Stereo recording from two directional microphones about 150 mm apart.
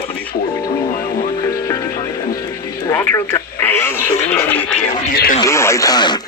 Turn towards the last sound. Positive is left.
turn(degrees=30)  # may be behind; listen again after turning